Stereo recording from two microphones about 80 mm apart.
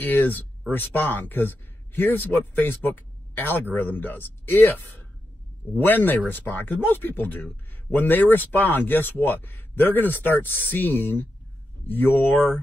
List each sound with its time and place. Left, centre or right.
0.0 s speech: left